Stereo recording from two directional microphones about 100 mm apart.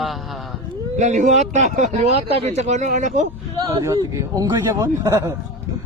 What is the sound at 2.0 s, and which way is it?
Speech, 85° right.